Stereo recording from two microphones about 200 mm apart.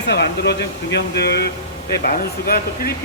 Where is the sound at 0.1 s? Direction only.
55° left (ahead or behind).